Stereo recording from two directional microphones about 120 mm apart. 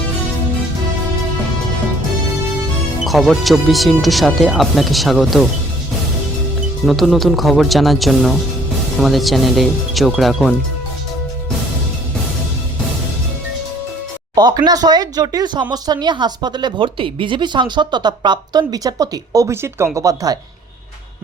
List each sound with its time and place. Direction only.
3.0 s speech: centre (ahead or behind)
6.8 s speech: centre (ahead or behind)
14.3 s speech: 35° right (ahead or behind)